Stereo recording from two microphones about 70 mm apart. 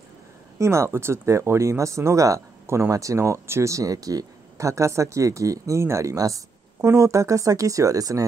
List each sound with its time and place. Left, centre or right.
0.6 s speech: right